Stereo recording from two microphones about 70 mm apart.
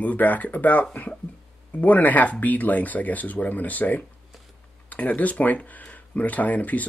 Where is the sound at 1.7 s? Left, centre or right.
Left.